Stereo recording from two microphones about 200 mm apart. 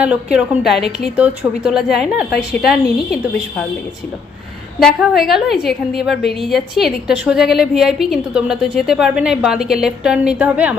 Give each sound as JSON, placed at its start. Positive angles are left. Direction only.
{"t": 0.0, "sound": "a woman's voice", "side_deg": -5}
{"t": 4.8, "sound": "a woman's voice", "side_deg": 0}